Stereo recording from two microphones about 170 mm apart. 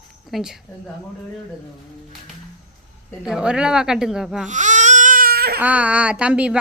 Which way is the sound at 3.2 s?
5° right (ahead or behind).